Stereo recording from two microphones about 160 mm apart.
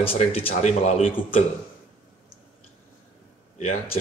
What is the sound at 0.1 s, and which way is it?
Speech, 35° left (ahead or behind).